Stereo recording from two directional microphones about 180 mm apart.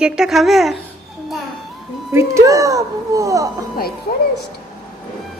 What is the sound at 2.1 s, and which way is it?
A woman's voice, 15° right (ahead or behind).